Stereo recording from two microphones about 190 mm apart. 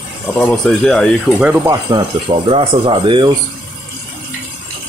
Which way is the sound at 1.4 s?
10° right (ahead or behind).